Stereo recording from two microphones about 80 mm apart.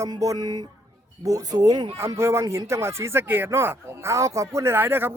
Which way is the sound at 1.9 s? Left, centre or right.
Right.